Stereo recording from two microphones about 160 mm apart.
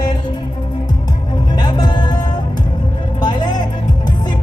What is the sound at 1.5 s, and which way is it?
Music, 25° left (ahead or behind).